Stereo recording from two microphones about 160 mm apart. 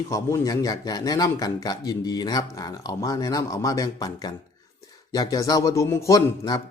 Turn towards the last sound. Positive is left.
turn(degrees=20)  # may be behind; listen again after turning